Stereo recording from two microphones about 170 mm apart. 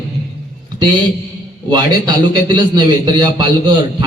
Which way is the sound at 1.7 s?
25° right (ahead or behind).